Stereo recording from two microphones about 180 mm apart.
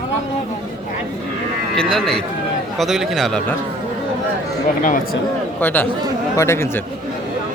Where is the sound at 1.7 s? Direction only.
5° left (ahead or behind).